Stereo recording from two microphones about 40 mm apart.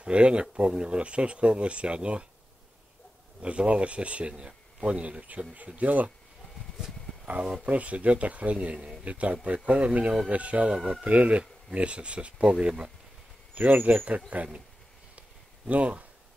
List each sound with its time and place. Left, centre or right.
0.0 s speech: right
3.3 s speech: right
5.8 s speech: right
7.6 s speech: right
13.6 s speech: right
15.1 s a sound: right